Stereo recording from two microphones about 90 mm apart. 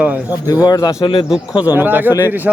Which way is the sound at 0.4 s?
45° left (ahead or behind).